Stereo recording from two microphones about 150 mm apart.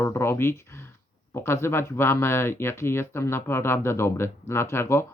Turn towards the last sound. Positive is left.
turn(degrees=15)  # may be behind; listen again after turning